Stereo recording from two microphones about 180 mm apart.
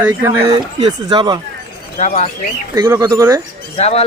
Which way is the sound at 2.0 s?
40° left (ahead or behind).